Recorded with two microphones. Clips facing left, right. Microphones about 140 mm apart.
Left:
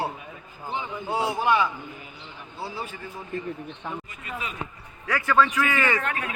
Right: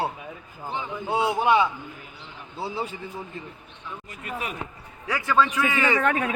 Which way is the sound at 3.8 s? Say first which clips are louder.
Left 4 dB; 55° left (ahead or behind).